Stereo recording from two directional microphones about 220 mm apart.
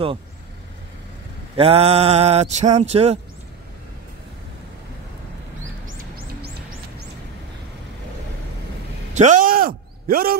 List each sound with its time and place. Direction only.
1.6 s speech: 25° right (ahead or behind)
5.9 s music: 45° right (ahead or behind)
9.1 s a sound: 35° right (ahead or behind)